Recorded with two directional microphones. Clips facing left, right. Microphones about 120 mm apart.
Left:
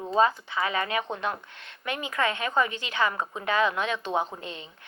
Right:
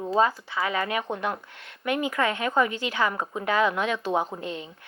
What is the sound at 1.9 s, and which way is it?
Speech, 20° left (ahead or behind).